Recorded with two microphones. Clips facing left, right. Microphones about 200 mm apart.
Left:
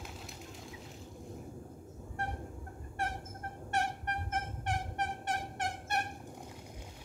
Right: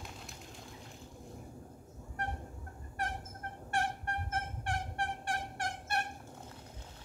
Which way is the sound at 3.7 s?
20° left (ahead or behind).